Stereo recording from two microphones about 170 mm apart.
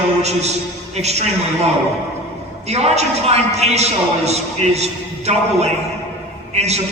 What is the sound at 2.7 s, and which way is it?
A man's voice, 40° right (ahead or behind).